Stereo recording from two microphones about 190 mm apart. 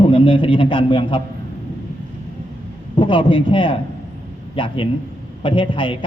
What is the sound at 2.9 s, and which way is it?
A man's voice, 25° left (ahead or behind).